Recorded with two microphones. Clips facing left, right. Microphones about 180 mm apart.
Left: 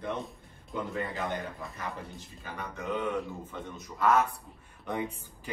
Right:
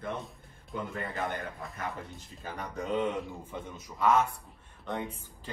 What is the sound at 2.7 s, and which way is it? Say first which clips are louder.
Speech: right 3 dB; 30° right (ahead or behind).